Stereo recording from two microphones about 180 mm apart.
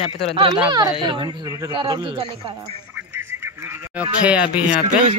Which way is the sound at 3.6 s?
10° right (ahead or behind).